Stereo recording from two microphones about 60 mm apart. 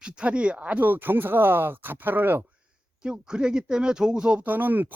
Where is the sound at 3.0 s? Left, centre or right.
Centre.